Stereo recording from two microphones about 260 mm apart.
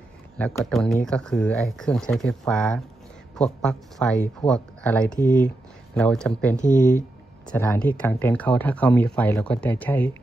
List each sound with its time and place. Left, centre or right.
0.4 s speech: centre
6.6 s speech: left
7.4 s speech: centre